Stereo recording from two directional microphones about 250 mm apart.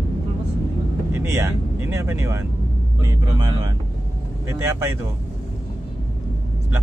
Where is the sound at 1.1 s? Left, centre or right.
Centre.